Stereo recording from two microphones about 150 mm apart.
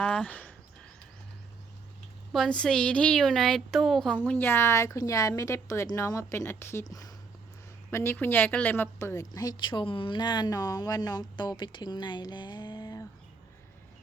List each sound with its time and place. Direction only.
0.0 s speech: 10° left (ahead or behind)
2.3 s a woman's voice: 5° left (ahead or behind)
4.2 s a woman's voice: 15° left (ahead or behind)